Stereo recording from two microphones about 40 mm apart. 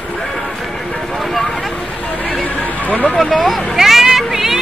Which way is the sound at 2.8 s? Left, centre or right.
Left.